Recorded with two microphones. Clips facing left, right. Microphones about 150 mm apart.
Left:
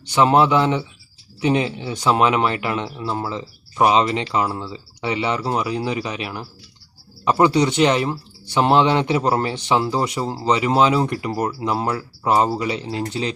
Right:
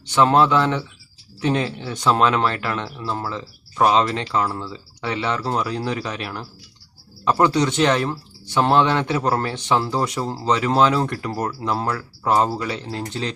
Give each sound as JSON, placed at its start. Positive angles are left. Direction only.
{"t": 0.1, "sound": "speech", "side_deg": 15}